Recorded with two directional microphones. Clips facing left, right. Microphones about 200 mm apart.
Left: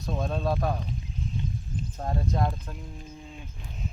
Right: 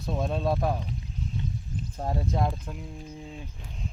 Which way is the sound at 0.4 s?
Centre (ahead or behind).